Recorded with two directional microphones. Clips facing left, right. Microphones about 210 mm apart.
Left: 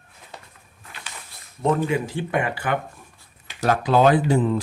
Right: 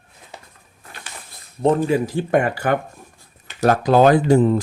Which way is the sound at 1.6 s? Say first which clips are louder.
Right 4 dB; 35° right (ahead or behind).